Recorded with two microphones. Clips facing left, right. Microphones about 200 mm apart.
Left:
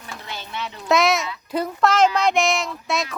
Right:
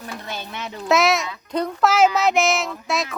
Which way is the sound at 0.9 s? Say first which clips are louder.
Even; centre (ahead or behind).